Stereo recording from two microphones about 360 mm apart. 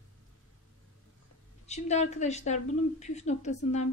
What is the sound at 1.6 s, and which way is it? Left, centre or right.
A woman's voice, centre.